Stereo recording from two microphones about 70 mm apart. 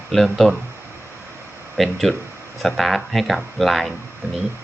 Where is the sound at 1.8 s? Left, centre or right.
Centre.